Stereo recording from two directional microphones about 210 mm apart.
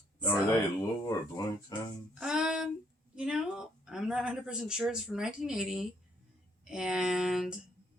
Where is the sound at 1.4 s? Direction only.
20° left (ahead or behind).